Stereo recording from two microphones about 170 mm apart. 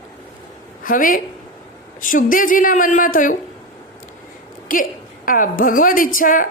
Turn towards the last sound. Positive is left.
turn(degrees=55)  # may be behind; listen again after turning